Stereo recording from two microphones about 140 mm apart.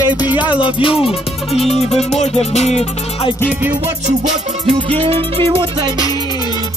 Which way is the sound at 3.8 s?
60° right (ahead or behind).